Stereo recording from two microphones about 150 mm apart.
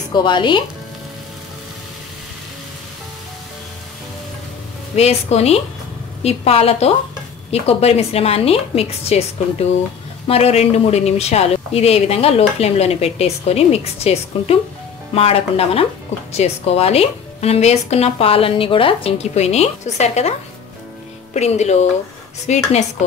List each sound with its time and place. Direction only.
0.1 s a woman's voice: 30° left (ahead or behind)
4.9 s a woman's voice: 45° left (ahead or behind)